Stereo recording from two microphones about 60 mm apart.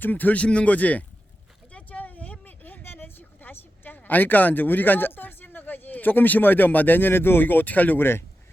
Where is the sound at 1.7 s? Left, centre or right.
Left.